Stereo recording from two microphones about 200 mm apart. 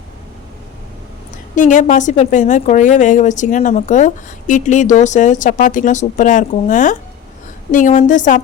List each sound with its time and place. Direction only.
1.5 s a woman's voice: 40° left (ahead or behind)